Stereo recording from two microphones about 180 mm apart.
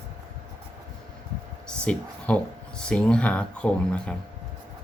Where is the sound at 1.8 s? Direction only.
5° left (ahead or behind).